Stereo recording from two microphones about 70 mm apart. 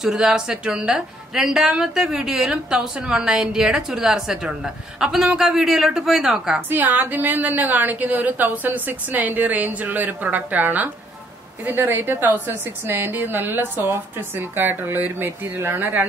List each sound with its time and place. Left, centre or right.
0.0 s a woman's voice: centre
6.7 s a woman's voice: right